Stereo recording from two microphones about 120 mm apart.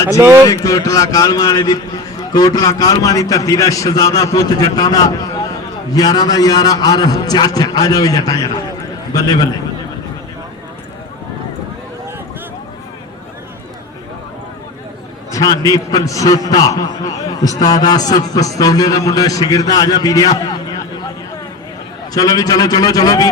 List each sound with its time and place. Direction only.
0.2 s speech: 20° right (ahead or behind)
0.4 s a man's voice: 30° left (ahead or behind)
15.3 s a man's voice: 30° left (ahead or behind)
22.1 s a man's voice: 30° left (ahead or behind)